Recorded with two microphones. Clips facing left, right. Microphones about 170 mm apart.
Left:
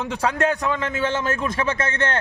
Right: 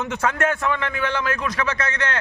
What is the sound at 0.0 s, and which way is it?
A man's voice, 15° left (ahead or behind).